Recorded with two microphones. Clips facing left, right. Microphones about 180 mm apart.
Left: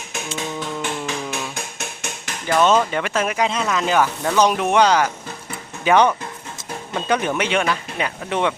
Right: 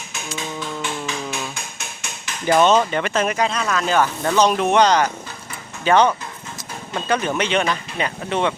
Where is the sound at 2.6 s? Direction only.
5° left (ahead or behind).